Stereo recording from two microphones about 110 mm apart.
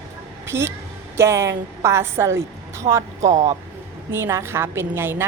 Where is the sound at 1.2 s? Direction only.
25° right (ahead or behind).